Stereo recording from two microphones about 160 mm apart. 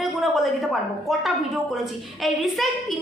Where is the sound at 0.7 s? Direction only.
Centre (ahead or behind).